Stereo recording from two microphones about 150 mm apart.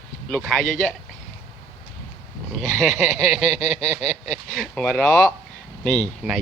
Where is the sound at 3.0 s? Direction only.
50° left (ahead or behind).